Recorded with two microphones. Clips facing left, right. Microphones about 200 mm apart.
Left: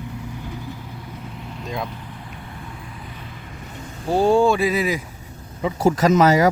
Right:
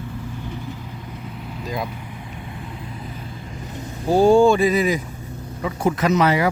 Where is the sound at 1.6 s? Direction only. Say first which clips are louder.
Right 1 dB; centre (ahead or behind).